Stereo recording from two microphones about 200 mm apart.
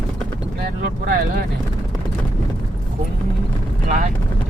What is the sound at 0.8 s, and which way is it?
Vehicle, 50° right (ahead or behind).